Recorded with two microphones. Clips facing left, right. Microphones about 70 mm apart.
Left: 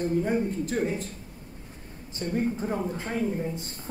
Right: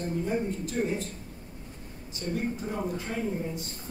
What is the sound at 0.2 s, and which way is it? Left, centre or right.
Speech, left.